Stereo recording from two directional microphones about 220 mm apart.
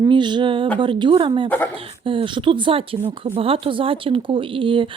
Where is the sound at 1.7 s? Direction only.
25° right (ahead or behind).